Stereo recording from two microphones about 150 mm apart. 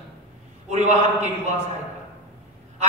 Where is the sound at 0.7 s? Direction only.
50° right (ahead or behind).